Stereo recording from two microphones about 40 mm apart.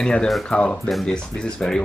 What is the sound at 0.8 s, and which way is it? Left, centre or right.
Speech, centre.